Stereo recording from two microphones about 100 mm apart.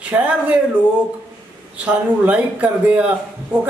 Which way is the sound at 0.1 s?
20° right (ahead or behind).